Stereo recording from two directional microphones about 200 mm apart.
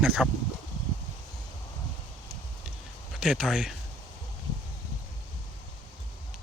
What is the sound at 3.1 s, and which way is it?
Speech, 5° right (ahead or behind).